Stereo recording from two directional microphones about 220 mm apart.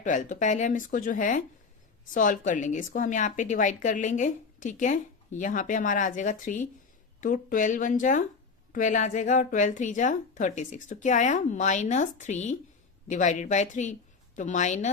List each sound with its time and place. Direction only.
0.0 s a woman's voice: 35° left (ahead or behind)